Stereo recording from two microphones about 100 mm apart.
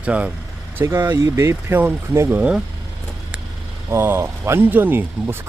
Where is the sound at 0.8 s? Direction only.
25° right (ahead or behind).